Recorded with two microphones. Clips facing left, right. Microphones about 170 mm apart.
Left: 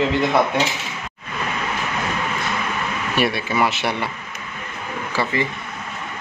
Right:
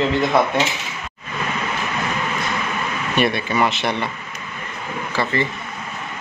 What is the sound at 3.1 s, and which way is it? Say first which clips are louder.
Speech: right 2 dB; 5° left (ahead or behind).